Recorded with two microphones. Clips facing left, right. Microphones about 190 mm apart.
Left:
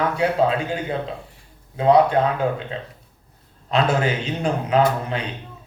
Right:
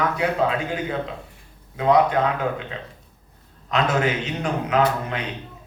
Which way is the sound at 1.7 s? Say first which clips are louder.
Left 2 dB; 30° left (ahead or behind).